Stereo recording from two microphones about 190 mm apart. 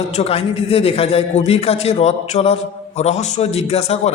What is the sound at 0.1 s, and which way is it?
A man's voice, 35° left (ahead or behind).